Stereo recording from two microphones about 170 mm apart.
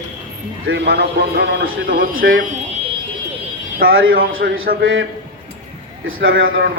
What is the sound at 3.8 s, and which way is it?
Speech, 60° right (ahead or behind).